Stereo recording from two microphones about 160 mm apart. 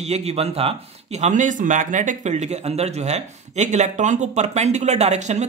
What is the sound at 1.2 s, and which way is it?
Speech, 50° right (ahead or behind).